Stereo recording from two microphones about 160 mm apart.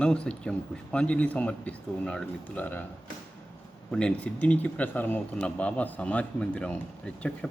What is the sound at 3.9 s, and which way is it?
A man's voice, 5° left (ahead or behind).